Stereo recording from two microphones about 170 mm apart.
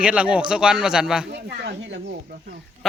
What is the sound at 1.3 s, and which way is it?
Speech, 80° right.